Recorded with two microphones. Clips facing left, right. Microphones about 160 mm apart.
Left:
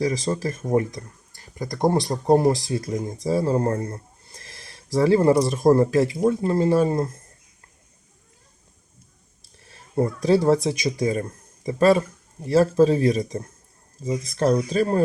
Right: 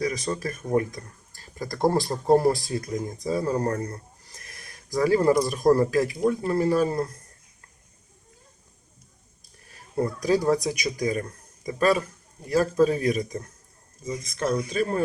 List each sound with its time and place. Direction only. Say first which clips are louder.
0.0 s speech: left 4 dB; 25° left (ahead or behind)
9.6 s speech: left 3 dB; 25° left (ahead or behind)